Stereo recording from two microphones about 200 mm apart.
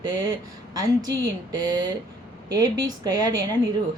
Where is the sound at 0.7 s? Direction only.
20° right (ahead or behind).